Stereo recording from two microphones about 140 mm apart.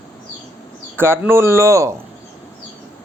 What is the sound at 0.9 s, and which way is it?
Speech, 15° right (ahead or behind).